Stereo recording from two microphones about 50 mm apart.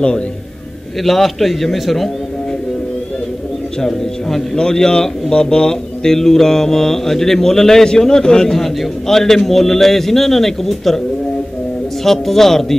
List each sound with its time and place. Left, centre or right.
1.0 s a man's voice: centre
3.8 s speech: centre
12.0 s speech: centre